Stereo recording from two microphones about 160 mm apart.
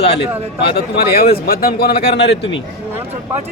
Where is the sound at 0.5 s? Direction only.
85° left.